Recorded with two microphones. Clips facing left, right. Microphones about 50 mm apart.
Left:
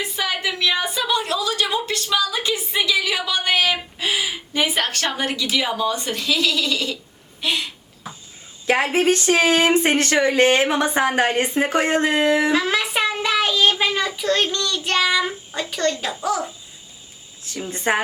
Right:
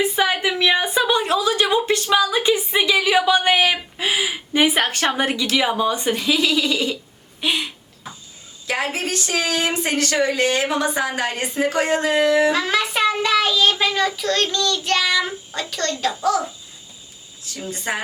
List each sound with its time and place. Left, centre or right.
0.0 s a sound: right
5.5 s speech: centre
7.4 s a sound: centre
8.6 s speech: left
12.5 s speech: centre
17.4 s speech: left